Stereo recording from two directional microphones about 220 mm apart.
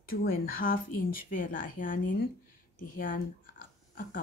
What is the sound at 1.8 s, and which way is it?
Speech, 40° left (ahead or behind).